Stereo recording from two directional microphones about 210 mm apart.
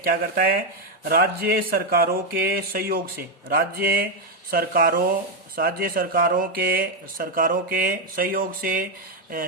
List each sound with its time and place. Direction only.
0.0 s speech: 45° right (ahead or behind)